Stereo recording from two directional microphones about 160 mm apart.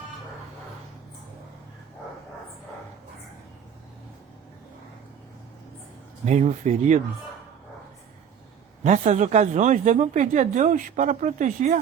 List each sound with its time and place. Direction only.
6.2 s speech: 45° right (ahead or behind)
8.8 s speech: 45° right (ahead or behind)